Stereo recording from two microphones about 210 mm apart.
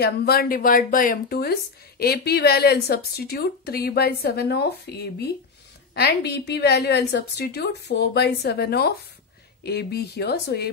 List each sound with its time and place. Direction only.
0.0 s a woman's voice: 50° left (ahead or behind)